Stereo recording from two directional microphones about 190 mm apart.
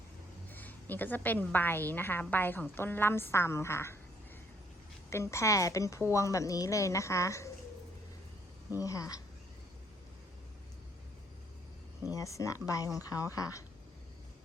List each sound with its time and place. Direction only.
0.5 s a woman's voice: 10° left (ahead or behind)
5.1 s a woman's voice: 15° left (ahead or behind)
8.8 s a woman's voice: 15° left (ahead or behind)
12.1 s a woman's voice: 15° left (ahead or behind)